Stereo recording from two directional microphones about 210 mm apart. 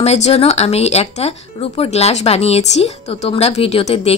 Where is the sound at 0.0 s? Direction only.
30° left (ahead or behind).